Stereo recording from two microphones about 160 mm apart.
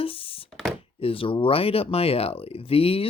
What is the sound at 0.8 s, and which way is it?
Speech, 35° left (ahead or behind).